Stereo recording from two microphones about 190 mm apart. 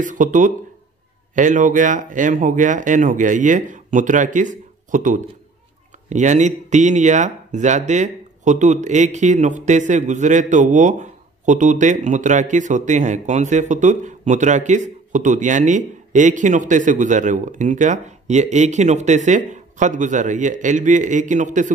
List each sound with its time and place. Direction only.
0.0 s speech: 40° right (ahead or behind)